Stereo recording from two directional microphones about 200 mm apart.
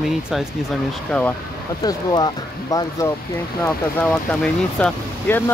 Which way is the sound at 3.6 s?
5° left (ahead or behind).